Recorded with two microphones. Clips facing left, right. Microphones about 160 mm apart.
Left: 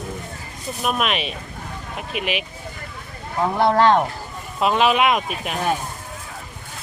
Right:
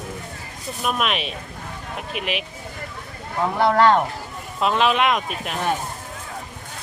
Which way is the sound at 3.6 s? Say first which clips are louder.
Even; 25° left (ahead or behind).